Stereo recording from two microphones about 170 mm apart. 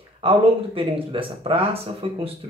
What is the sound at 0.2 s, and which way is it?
Speech, 35° right (ahead or behind).